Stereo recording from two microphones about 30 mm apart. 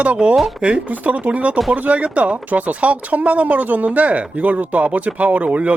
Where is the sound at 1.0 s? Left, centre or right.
Right.